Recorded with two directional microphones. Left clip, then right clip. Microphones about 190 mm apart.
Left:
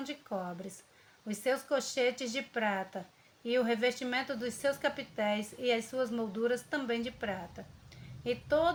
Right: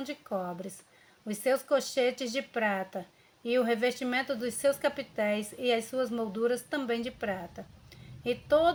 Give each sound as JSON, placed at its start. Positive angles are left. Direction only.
{"t": 0.0, "sound": "a woman's voice", "side_deg": -30}